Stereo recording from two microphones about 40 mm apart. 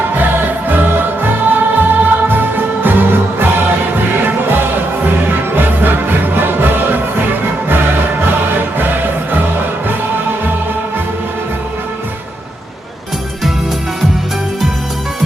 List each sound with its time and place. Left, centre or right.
0.1 s music: right